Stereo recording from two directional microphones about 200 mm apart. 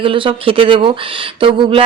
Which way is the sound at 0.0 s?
25° right (ahead or behind).